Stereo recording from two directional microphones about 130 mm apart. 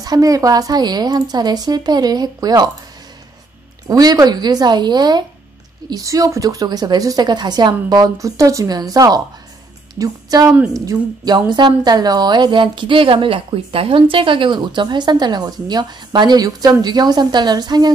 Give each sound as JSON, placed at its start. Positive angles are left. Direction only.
{"t": 0.0, "sound": "a woman's voice", "side_deg": -30}
{"t": 3.8, "sound": "a woman's voice", "side_deg": -30}